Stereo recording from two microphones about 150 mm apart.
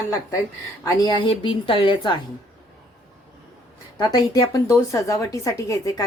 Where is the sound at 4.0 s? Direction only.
25° left (ahead or behind).